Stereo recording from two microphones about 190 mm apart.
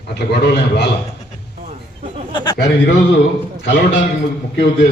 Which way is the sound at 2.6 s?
65° left (ahead or behind).